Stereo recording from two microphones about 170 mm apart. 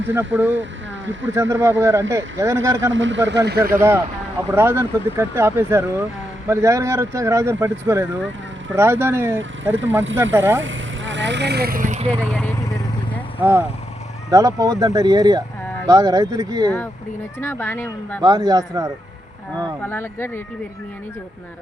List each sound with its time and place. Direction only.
0.3 s speech: 10° right (ahead or behind)
0.6 s speech: 90° right
1.3 s speech: 15° right (ahead or behind)
2.9 s speech: 90° right
3.6 s speech: 15° right (ahead or behind)
10.7 s vehicle: 90° right; by 12.1 s 40° right (ahead or behind)
12.2 s speech: 10° left (ahead or behind)
13.4 s speech: 15° right (ahead or behind)
17.4 s speech: 15° left (ahead or behind)
18.2 s speech: 20° right (ahead or behind)
19.8 s speech: 15° left (ahead or behind)